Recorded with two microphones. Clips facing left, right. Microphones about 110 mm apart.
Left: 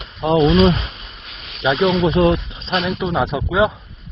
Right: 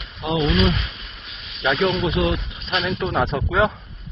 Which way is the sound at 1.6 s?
15° left (ahead or behind).